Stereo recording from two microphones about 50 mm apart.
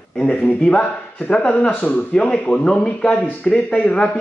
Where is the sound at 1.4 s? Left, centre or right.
Left.